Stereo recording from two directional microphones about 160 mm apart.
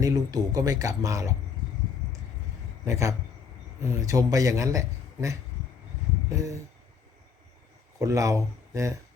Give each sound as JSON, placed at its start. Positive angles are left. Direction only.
{"t": 0.0, "sound": "a man's voice", "side_deg": -20}
{"t": 2.8, "sound": "a man's voice", "side_deg": -20}
{"t": 7.9, "sound": "speech", "side_deg": -20}